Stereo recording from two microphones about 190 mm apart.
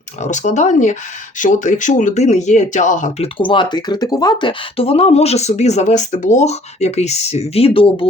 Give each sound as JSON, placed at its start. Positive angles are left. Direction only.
{"t": 0.2, "sound": "speech", "side_deg": 40}
{"t": 3.3, "sound": "speech", "side_deg": 25}